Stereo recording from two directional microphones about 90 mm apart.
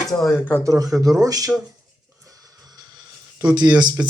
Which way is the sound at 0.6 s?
40° right (ahead or behind).